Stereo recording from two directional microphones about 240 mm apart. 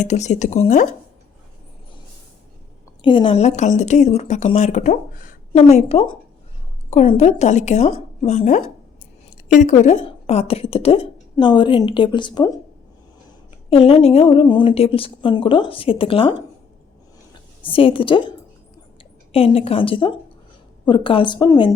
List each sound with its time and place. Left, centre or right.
0.0 s a woman's voice: left
3.0 s a woman's voice: left
13.7 s a woman's voice: left
17.7 s a woman's voice: left